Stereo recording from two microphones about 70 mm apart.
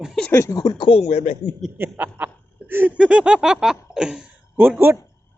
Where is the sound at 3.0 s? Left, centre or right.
Centre.